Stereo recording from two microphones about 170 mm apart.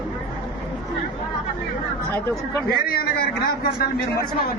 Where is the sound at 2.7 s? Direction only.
60° left (ahead or behind).